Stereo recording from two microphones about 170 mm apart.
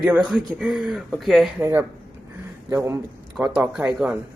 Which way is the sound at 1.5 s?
15° right (ahead or behind).